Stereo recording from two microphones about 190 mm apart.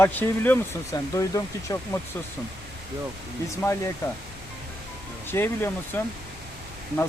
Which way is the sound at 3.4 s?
15° left (ahead or behind).